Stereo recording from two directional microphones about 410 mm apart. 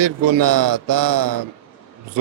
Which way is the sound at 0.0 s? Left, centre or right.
Right.